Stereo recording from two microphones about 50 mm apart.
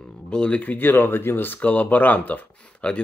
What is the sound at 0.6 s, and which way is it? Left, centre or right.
Speech, left.